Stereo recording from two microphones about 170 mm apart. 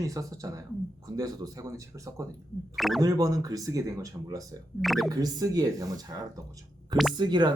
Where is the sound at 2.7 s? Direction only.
Centre (ahead or behind).